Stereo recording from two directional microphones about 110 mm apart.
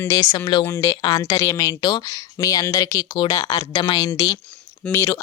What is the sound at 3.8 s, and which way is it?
Speech, 45° left (ahead or behind).